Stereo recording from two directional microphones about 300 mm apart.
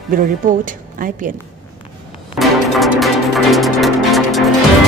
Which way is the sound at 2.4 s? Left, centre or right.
Centre.